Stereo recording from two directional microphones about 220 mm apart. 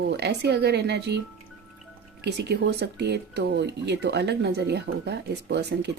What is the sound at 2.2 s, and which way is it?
Speech, 50° right (ahead or behind).